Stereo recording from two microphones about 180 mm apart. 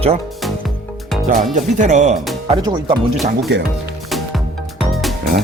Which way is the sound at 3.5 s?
75° right (ahead or behind).